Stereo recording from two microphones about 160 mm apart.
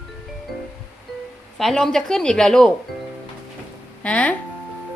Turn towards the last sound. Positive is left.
turn(degrees=10)  # may be behind; listen again after turning